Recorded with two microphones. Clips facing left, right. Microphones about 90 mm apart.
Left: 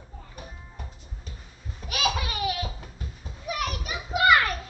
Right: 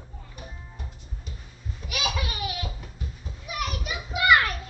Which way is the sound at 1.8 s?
40° left (ahead or behind).